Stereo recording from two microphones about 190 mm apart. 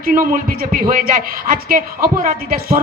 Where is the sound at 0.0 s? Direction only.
45° right (ahead or behind).